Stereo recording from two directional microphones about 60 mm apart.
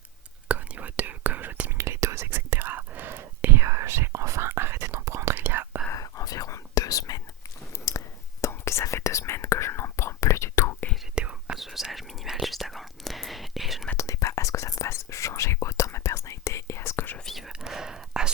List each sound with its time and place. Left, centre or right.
0.4 s whispering: right
1.8 s whispering: right
5.3 s whispering: right
5.9 s whispering: left
7.9 s whispering: left
11.1 s whispering: centre
11.5 s whispering: centre
13.9 s whispering: left
17.6 s whispering: centre